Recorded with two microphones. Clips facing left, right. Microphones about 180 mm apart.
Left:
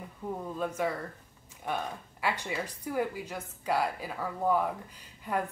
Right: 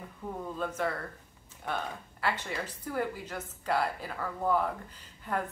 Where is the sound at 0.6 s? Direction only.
10° left (ahead or behind).